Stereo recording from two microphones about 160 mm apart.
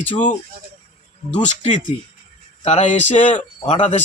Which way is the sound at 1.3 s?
45° left (ahead or behind).